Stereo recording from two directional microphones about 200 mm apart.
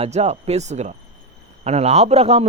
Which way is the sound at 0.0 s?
35° right (ahead or behind).